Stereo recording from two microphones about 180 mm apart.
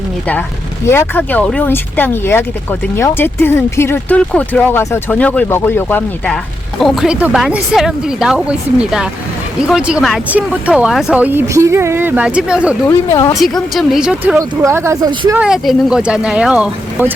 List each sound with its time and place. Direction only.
0.9 s speech: 10° left (ahead or behind); by 12.7 s 5° right (ahead or behind)
12.9 s speech: 15° left (ahead or behind)
13.4 s speech: centre (ahead or behind)
14.3 s speech: 15° right (ahead or behind)
15.4 s speech: centre (ahead or behind)